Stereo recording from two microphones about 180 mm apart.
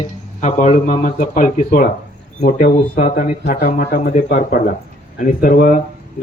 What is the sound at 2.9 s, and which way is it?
Speech, 45° left (ahead or behind).